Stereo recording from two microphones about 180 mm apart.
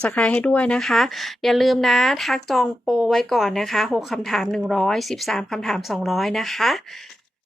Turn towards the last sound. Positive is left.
turn(degrees=0)  # may be behind; listen again after turning